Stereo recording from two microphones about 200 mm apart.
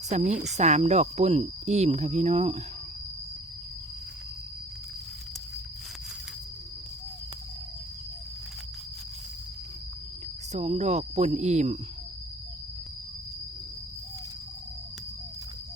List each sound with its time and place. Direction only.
0.1 s speech: 35° right (ahead or behind)
10.5 s speech: 35° right (ahead or behind)